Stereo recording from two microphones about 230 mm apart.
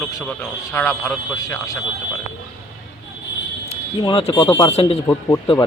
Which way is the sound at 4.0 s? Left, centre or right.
Left.